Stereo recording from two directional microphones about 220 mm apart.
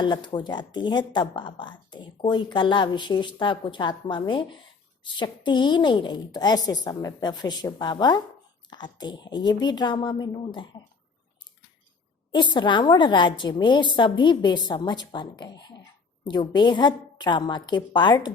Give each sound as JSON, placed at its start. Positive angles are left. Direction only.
{"t": 0.0, "sound": "a woman's voice", "side_deg": 20}
{"t": 12.3, "sound": "a woman's voice", "side_deg": 20}